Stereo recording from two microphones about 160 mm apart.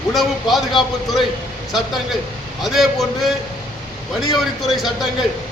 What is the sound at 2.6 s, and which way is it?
Speech, centre (ahead or behind).